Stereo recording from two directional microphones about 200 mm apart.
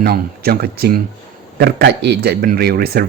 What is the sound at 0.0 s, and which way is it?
Speech, 50° right (ahead or behind).